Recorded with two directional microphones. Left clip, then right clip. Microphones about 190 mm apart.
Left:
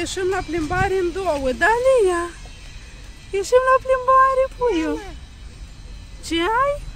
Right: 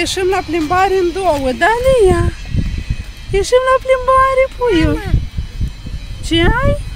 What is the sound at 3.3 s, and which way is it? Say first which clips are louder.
Speech: right 4 dB; 5° right (ahead or behind).